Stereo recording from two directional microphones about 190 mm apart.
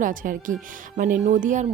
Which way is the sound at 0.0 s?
45° right (ahead or behind).